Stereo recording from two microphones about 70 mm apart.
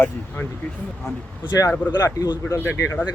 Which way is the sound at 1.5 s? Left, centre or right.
Left.